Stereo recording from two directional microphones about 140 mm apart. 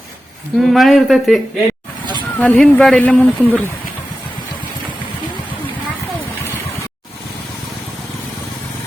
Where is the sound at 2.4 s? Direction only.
10° left (ahead or behind).